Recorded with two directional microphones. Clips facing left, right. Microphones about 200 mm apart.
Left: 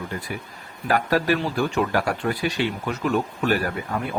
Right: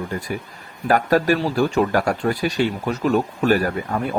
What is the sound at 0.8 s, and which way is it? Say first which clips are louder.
Speech: right 4 dB; 45° right (ahead or behind).